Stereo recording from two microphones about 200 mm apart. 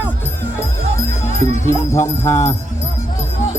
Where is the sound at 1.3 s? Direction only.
35° right (ahead or behind).